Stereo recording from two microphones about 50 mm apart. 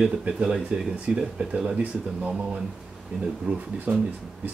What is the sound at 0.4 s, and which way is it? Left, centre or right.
Speech, centre.